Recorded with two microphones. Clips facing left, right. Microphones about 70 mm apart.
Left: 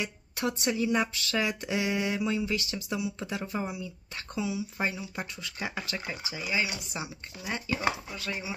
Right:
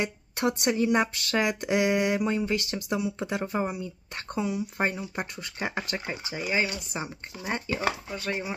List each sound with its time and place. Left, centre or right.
0.0 s speech: right